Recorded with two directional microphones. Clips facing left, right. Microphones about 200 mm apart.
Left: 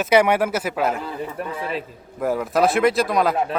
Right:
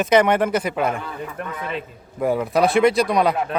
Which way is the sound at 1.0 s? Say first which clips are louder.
Left 2 dB; 30° left (ahead or behind).